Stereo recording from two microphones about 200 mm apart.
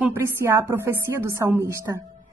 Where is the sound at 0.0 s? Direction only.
10° right (ahead or behind).